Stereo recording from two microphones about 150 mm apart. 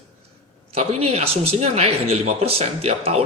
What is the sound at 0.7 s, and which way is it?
Speech, 45° right (ahead or behind).